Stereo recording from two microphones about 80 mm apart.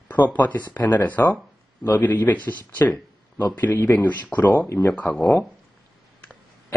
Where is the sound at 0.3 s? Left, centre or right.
Left.